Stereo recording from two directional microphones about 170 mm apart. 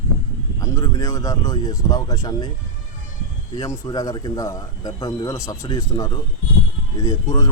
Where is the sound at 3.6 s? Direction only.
20° left (ahead or behind).